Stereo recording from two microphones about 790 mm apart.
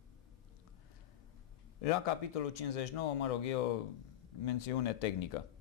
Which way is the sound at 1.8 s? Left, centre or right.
Left.